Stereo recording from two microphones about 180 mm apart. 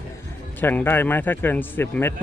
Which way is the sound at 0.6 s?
10° left (ahead or behind).